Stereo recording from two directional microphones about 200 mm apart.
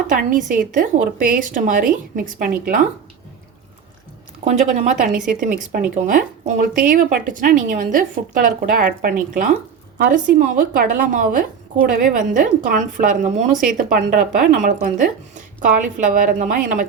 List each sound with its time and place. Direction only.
0.1 s a woman's voice: 40° right (ahead or behind)
4.4 s a woman's voice: 40° right (ahead or behind)
10.3 s a woman's voice: 40° right (ahead or behind)